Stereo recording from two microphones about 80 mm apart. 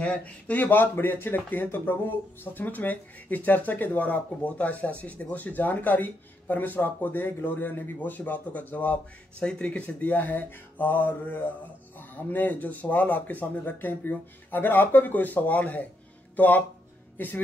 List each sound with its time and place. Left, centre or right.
0.0 s speech: centre